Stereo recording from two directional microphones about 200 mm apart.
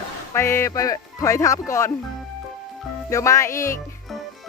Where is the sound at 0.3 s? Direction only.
15° left (ahead or behind).